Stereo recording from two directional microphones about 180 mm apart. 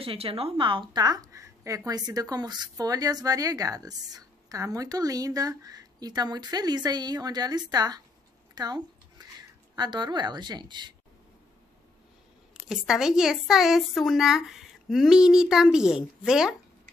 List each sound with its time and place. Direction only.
0.0 s a woman's voice: 30° right (ahead or behind)
12.6 s a woman's voice: 5° right (ahead or behind)